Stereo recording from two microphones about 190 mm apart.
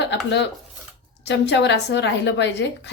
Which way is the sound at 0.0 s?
65° left (ahead or behind).